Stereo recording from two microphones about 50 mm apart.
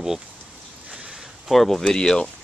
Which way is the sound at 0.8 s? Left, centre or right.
Right.